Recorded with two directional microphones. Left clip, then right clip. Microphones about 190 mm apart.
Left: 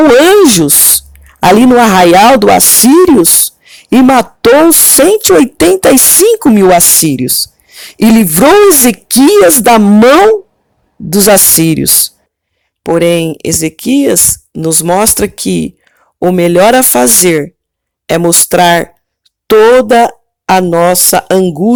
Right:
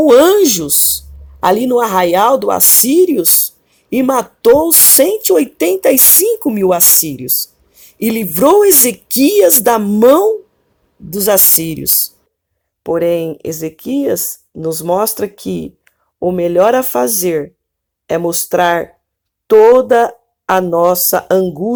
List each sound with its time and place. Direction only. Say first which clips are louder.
0.4 s speech: left 7 dB; 35° left (ahead or behind)